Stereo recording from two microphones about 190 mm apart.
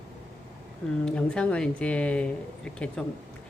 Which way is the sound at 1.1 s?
5° left (ahead or behind).